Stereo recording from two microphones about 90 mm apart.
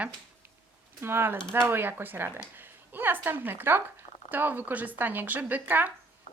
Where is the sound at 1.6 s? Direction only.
25° right (ahead or behind).